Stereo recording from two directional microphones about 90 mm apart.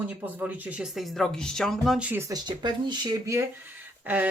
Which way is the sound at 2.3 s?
55° right (ahead or behind).